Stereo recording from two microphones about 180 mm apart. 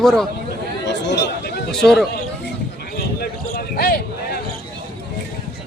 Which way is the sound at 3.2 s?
60° left (ahead or behind).